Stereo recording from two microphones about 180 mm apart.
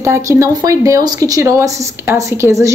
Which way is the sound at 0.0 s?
15° right (ahead or behind).